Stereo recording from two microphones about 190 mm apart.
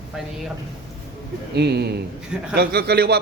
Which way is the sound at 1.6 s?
60° right (ahead or behind).